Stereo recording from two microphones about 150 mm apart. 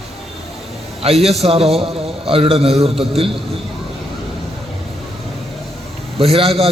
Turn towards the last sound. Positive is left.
turn(degrees=-40)  # may be behind; listen again after turning